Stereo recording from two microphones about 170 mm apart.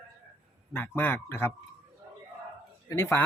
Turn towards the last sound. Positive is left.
turn(degrees=10)  # may be behind; listen again after turning